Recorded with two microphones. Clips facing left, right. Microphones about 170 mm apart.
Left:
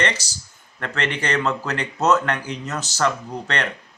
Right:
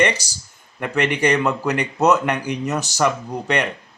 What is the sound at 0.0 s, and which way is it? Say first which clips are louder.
A man's voice: right 5 dB; 10° right (ahead or behind).